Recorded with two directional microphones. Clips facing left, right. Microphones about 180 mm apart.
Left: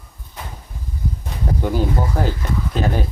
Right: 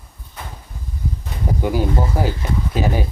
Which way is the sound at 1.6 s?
10° right (ahead or behind).